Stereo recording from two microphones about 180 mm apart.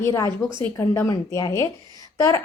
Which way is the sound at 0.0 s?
15° left (ahead or behind).